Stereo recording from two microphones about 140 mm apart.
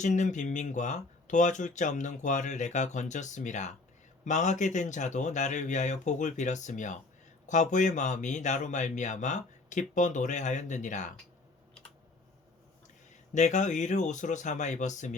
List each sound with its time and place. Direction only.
0.0 s speech: 60° left (ahead or behind)
13.3 s speech: 60° left (ahead or behind)